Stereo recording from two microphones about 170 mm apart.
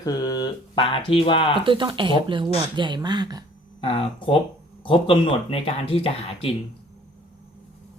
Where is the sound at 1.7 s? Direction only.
30° right (ahead or behind).